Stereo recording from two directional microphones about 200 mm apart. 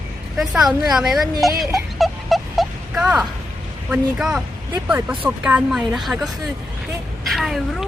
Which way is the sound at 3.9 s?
5° right (ahead or behind).